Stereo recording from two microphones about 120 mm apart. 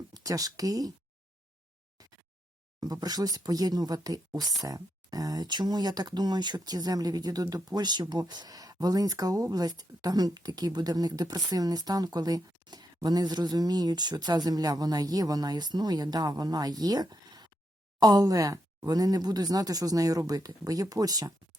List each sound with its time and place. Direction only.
0.1 s speech: 30° right (ahead or behind)
2.0 s a sound: 30° right (ahead or behind)
2.8 s speech: 35° right (ahead or behind)